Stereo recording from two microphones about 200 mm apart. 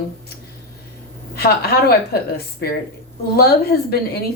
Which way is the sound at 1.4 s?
50° left (ahead or behind).